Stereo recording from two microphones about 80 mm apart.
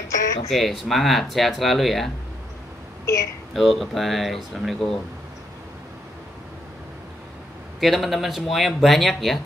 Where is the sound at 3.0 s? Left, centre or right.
Left.